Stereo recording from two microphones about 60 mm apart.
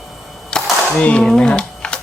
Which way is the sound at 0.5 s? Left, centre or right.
Centre.